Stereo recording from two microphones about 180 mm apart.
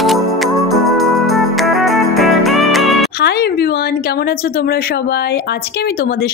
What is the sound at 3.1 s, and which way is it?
A woman's voice, 60° left (ahead or behind).